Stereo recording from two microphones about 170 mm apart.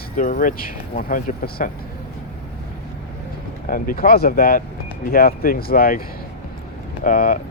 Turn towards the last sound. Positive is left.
turn(degrees=50)  # may be behind; listen again after turning